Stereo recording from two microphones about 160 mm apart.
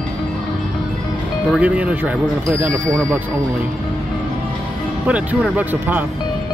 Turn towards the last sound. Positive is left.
turn(degrees=-10)  # may be behind; listen again after turning